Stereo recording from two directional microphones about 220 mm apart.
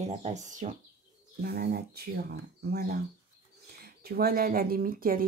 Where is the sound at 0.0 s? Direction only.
30° right (ahead or behind).